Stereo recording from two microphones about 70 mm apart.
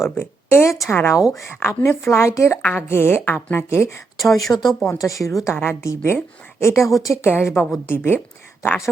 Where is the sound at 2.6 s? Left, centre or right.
Left.